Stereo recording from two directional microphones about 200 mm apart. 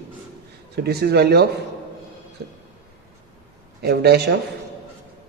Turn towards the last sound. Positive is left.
turn(degrees=-55)  # may be behind; listen again after turning